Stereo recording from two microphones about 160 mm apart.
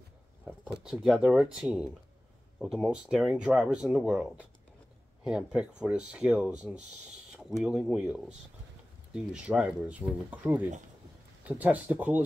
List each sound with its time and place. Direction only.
0.5 s speech: 10° right (ahead or behind)